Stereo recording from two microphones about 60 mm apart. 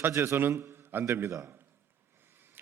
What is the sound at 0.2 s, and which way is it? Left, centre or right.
Speech, right.